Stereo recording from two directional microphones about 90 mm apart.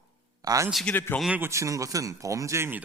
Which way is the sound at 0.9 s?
20° left (ahead or behind).